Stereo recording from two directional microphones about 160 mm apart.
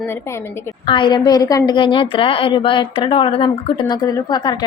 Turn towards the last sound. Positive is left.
turn(degrees=25)  # may be behind; listen again after turning